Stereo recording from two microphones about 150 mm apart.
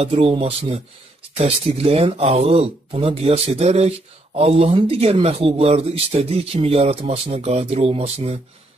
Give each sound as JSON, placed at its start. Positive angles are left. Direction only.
{"t": 0.0, "sound": "speech", "side_deg": -40}